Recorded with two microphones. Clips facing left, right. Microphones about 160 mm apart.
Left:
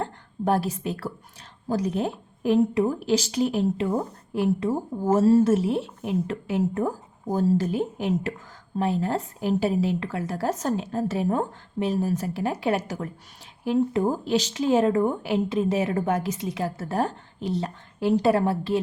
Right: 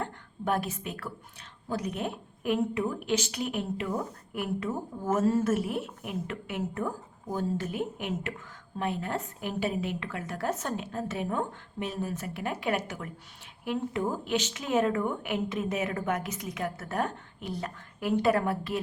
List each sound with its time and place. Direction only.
0.0 s a woman's voice: 35° left (ahead or behind)